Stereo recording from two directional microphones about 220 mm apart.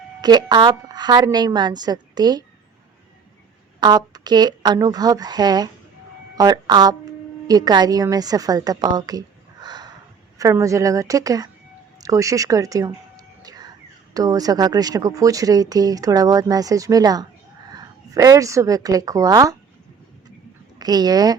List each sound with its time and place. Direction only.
0.2 s a woman's voice: 20° right (ahead or behind)
3.8 s a woman's voice: 20° right (ahead or behind)
11.9 s whispering: 15° right (ahead or behind)
14.1 s a woman's voice: 15° right (ahead or behind)
20.7 s speech: 20° right (ahead or behind)